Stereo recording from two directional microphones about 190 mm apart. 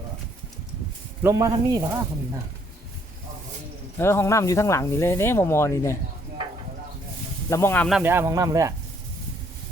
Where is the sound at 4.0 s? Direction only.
15° left (ahead or behind).